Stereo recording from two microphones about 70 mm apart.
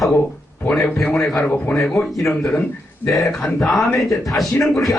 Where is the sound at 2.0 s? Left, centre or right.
Centre.